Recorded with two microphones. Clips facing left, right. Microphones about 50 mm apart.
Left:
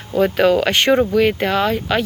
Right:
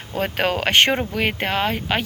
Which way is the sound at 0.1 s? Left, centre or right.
Right.